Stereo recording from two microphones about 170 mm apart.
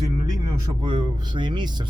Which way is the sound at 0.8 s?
30° right (ahead or behind).